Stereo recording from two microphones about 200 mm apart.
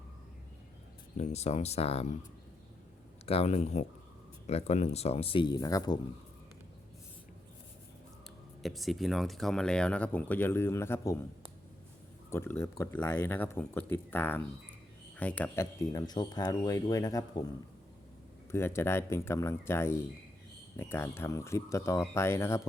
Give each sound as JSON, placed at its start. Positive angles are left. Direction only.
{"t": 1.1, "sound": "speech", "side_deg": 35}
{"t": 3.2, "sound": "speech", "side_deg": 30}
{"t": 8.6, "sound": "speech", "side_deg": 0}
{"t": 12.3, "sound": "speech", "side_deg": 10}
{"t": 18.5, "sound": "speech", "side_deg": 10}